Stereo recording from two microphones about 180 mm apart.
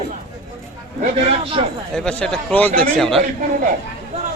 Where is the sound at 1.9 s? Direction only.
5° left (ahead or behind).